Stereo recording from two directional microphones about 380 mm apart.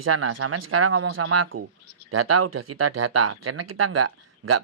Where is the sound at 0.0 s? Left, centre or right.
Right.